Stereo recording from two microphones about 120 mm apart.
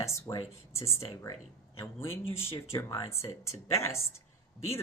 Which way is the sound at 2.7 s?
30° left (ahead or behind).